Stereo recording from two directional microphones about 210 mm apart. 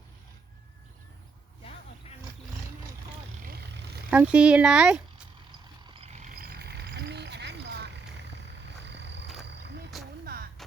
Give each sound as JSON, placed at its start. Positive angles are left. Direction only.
{"t": 3.4, "sound": "vehicle", "side_deg": -50}
{"t": 4.1, "sound": "speech", "side_deg": -5}
{"t": 5.5, "sound": "vehicle", "side_deg": -20}
{"t": 6.2, "sound": "a sound", "side_deg": -45}
{"t": 8.9, "sound": "a sound", "side_deg": -55}
{"t": 9.9, "sound": "music", "side_deg": 0}